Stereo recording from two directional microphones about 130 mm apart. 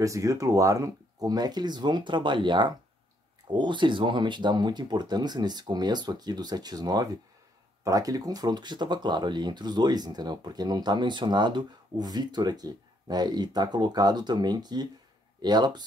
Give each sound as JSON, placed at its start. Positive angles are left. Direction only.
{"t": 0.0, "sound": "speech", "side_deg": -25}